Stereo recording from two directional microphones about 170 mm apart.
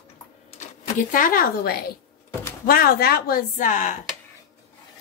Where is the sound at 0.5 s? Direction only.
50° left (ahead or behind).